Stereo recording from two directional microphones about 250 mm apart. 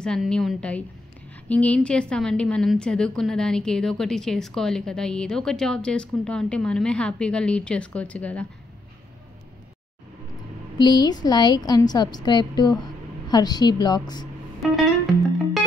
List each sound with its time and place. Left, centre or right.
0.0 s a woman's voice: centre
10.8 s a woman's voice: centre
14.6 s a woman's voice: centre